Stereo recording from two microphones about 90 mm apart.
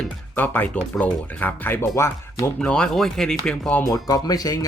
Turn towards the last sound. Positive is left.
turn(degrees=45)  # may be behind; listen again after turning